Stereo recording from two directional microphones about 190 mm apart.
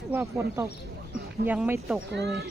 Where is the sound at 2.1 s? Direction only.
60° right (ahead or behind).